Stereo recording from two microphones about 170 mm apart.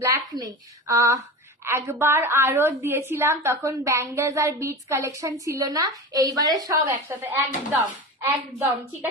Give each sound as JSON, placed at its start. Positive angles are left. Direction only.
{"t": 0.4, "sound": "a woman's voice", "side_deg": -20}
{"t": 6.9, "sound": "a woman's voice", "side_deg": -10}